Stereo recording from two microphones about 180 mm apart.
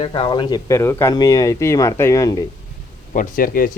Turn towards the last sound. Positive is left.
turn(degrees=50)  # may be behind; listen again after turning